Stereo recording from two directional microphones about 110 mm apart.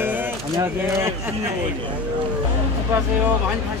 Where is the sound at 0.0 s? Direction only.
20° right (ahead or behind).